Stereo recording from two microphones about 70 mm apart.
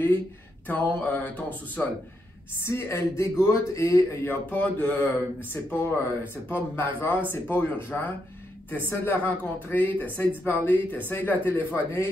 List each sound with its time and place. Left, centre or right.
0.7 s speech: left
2.6 s speech: left